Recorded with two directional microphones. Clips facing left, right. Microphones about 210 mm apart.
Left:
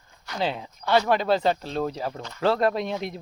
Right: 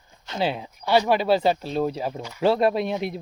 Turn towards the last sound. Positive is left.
turn(degrees=-15)  # may be behind; listen again after turning